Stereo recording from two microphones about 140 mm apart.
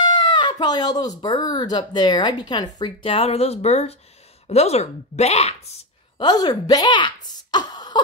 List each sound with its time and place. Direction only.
0.0 s speech: 35° left (ahead or behind); by 5.6 s 50° left (ahead or behind)
6.1 s a woman's voice: 30° left (ahead or behind)
7.5 s a sound: 30° left (ahead or behind)